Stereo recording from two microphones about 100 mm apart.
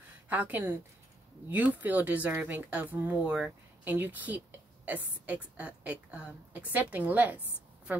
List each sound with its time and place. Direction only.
0.3 s speech: 15° right (ahead or behind)